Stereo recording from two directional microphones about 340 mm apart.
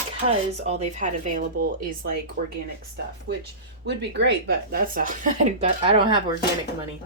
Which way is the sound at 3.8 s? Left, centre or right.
Right.